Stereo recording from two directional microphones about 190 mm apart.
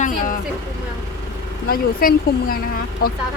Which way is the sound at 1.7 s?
50° left (ahead or behind).